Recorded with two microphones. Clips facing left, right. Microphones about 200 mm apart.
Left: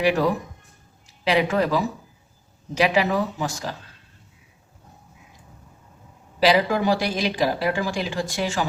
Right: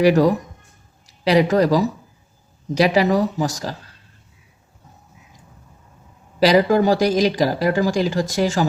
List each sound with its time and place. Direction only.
0.0 s speech: 40° right (ahead or behind)
6.4 s speech: 40° right (ahead or behind)